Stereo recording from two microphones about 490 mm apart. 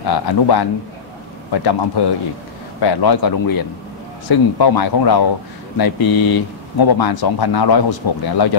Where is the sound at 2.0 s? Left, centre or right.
Left.